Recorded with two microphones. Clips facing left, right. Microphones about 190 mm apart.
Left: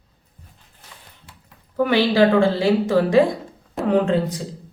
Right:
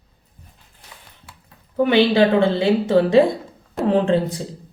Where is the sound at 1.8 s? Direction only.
25° right (ahead or behind).